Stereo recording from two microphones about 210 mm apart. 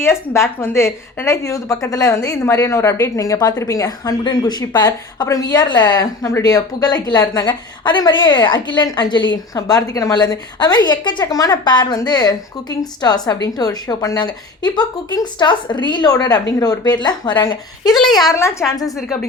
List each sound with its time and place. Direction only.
0.0 s speech: 10° left (ahead or behind)
17.9 s speech: centre (ahead or behind)
18.2 s a woman's voice: 15° left (ahead or behind)
18.9 s speech: centre (ahead or behind)